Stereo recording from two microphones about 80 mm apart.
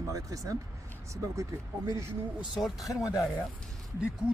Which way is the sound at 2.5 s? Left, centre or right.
Centre.